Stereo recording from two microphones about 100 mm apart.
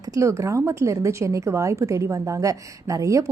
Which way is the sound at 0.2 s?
30° right (ahead or behind).